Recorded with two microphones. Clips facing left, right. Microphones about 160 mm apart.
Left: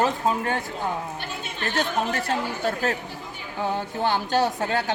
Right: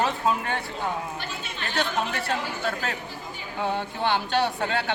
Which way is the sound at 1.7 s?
45° left (ahead or behind).